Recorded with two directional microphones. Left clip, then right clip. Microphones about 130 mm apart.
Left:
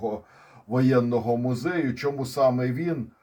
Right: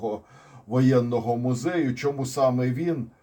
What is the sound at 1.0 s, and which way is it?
Speech, 35° left (ahead or behind).